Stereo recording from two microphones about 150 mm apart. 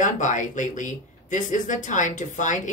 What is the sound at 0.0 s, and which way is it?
Speech, 55° left (ahead or behind).